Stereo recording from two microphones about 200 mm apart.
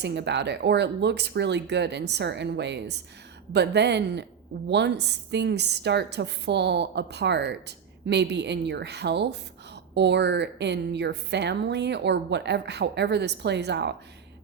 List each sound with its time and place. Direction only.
0.0 s a woman's voice: 60° right (ahead or behind)